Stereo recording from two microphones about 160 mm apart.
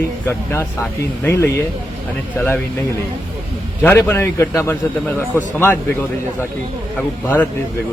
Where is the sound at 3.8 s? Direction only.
15° left (ahead or behind).